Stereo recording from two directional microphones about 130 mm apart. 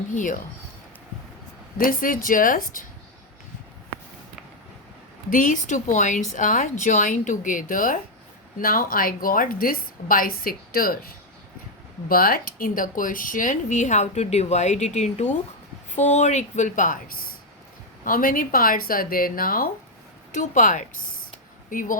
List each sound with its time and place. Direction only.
0.1 s speech: 80° left
1.8 s a woman's voice: 90° left
5.3 s a woman's voice: 85° left
12.0 s a woman's voice: 90° left
20.3 s a woman's voice: 75° left (ahead or behind); by 21.9 s 90° left